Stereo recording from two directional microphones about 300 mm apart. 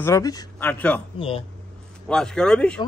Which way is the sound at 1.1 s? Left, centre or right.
Centre.